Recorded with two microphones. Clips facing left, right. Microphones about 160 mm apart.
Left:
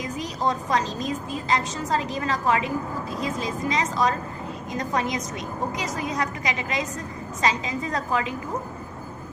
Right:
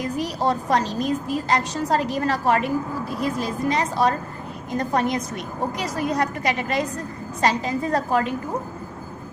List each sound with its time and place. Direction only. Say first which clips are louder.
0.4 s a woman's voice: right 2 dB; 65° right (ahead or behind)